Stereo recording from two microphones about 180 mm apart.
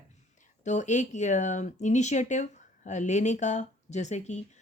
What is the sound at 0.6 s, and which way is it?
Speech, 40° left (ahead or behind).